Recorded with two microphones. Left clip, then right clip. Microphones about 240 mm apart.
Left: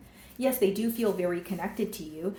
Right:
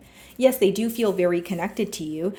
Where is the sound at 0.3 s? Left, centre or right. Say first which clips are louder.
Right 8 dB; right.